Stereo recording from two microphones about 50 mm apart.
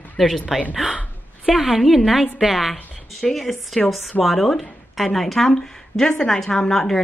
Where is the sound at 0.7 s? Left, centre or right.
Centre.